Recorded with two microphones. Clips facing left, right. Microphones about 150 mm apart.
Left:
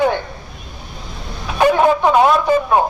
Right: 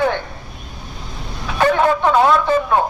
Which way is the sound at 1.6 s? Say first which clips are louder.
Left 2 dB; 15° left (ahead or behind).